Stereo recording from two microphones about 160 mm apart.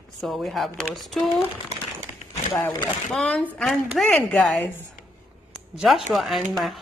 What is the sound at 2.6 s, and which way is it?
Speech, 25° left (ahead or behind).